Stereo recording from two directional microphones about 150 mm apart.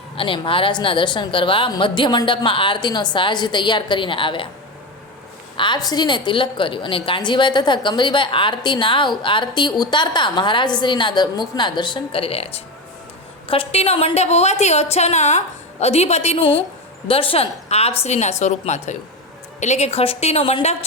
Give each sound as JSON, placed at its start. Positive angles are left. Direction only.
{"t": 0.2, "sound": "a woman's voice", "side_deg": 35}
{"t": 5.5, "sound": "a woman's voice", "side_deg": 30}